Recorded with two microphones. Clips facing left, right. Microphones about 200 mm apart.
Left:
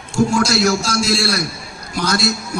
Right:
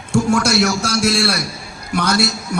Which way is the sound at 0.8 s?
65° right (ahead or behind).